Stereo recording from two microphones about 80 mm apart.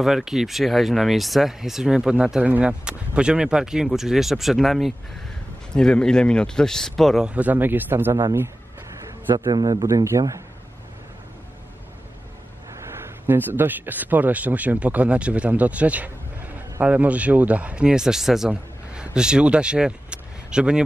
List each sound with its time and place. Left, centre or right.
0.0 s speech: centre
5.7 s speech: centre
7.2 s speech: centre
8.1 s a man's voice: right
9.3 s a man's voice: right
10.0 s speech: right
13.0 s speech: right